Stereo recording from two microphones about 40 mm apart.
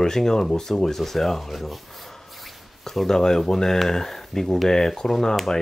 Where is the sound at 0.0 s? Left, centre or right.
Centre.